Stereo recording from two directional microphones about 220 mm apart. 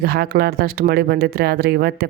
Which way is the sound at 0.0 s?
45° right (ahead or behind).